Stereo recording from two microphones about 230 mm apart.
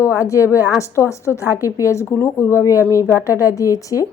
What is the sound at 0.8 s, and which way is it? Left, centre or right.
A woman's voice, centre.